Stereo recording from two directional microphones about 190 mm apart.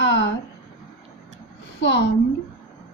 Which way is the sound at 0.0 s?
70° left (ahead or behind).